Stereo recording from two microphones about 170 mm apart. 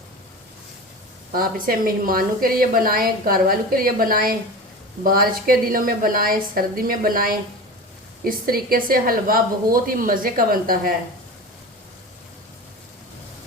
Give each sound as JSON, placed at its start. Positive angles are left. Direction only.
{"t": 1.3, "sound": "a woman's voice", "side_deg": -60}